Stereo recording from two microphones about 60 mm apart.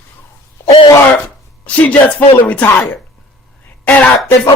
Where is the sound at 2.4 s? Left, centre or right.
Left.